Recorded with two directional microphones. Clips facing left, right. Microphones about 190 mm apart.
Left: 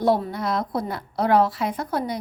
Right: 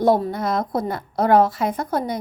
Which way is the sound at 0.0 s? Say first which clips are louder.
Right 3 dB; 45° right (ahead or behind).